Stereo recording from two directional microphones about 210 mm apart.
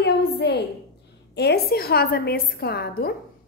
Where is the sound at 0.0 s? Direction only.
50° left (ahead or behind).